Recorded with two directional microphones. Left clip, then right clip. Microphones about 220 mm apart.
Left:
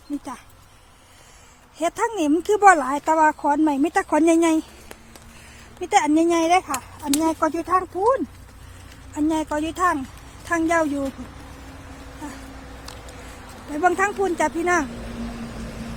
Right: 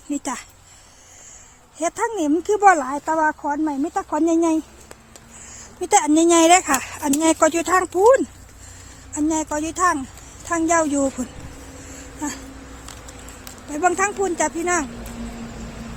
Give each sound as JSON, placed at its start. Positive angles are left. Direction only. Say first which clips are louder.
{"t": 1.8, "sound": "speech", "louder": "even", "side_deg": -5}
{"t": 5.8, "sound": "speech", "louder": "right 2 dB", "side_deg": -15}
{"t": 9.1, "sound": "a woman's voice", "louder": "right 1 dB", "side_deg": 0}
{"t": 13.7, "sound": "speech", "louder": "even", "side_deg": 0}
{"t": 15.1, "sound": "vehicle", "louder": "left 1 dB", "side_deg": 55}